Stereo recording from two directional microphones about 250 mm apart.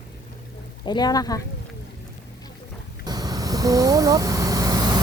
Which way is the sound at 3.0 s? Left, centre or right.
Centre.